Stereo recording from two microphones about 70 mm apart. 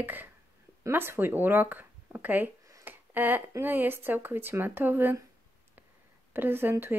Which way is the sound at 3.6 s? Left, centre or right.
Right.